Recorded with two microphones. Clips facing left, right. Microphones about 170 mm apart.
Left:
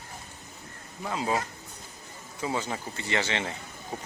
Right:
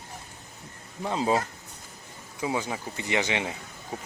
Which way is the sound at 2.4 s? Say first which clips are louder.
Right 2 dB; 10° right (ahead or behind).